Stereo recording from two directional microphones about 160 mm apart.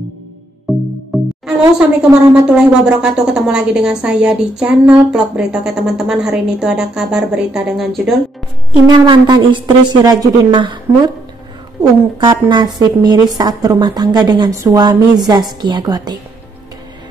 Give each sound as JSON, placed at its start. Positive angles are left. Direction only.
{"t": 0.7, "sound": "music", "side_deg": 0}
{"t": 1.4, "sound": "speech", "side_deg": -5}
{"t": 8.8, "sound": "a woman's voice", "side_deg": -30}
{"t": 12.3, "sound": "a woman's voice", "side_deg": -25}